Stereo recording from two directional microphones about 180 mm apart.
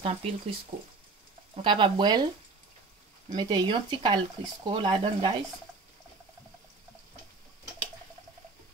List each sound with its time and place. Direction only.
0.0 s speech: 35° right (ahead or behind)
3.3 s speech: 25° right (ahead or behind)